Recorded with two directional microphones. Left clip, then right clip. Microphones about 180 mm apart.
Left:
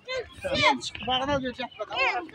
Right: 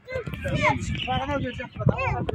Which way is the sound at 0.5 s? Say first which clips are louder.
Left 1 dB; 30° right (ahead or behind).